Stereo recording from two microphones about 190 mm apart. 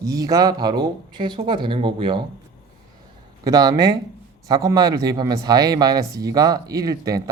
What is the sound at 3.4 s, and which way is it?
Speech, 20° right (ahead or behind).